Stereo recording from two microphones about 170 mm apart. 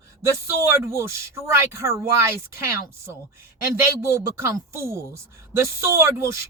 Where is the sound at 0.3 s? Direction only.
15° right (ahead or behind).